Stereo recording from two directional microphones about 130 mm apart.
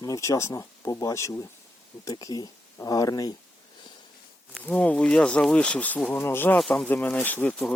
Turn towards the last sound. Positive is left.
turn(degrees=15)  # may be behind; listen again after turning